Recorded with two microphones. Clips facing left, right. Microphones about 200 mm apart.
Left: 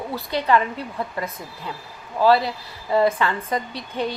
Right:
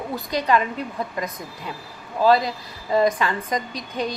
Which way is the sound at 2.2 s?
15° right (ahead or behind).